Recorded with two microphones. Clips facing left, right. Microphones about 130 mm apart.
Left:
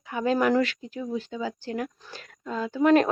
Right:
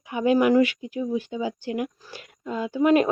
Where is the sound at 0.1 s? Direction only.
15° right (ahead or behind).